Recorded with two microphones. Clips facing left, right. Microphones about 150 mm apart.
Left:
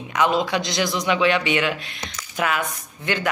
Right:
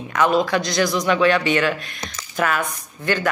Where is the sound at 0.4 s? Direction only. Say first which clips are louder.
Right 3 dB; 20° left (ahead or behind).